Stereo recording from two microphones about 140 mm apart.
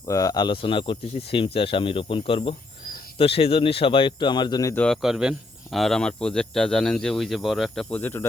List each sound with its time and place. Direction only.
0.1 s speech: 25° left (ahead or behind)
4.7 s speech: 10° left (ahead or behind)
4.9 s speech: 5° right (ahead or behind); by 8.3 s 15° left (ahead or behind)